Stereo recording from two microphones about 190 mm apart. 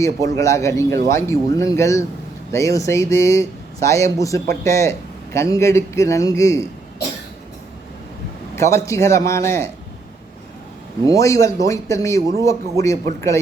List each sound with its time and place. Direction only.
0.0 s a man's voice: 15° left (ahead or behind)
8.5 s a man's voice: 15° left (ahead or behind)
11.0 s a man's voice: 15° left (ahead or behind)